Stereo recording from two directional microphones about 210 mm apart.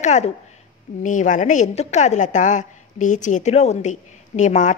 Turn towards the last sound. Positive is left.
turn(degrees=35)  # may be behind; listen again after turning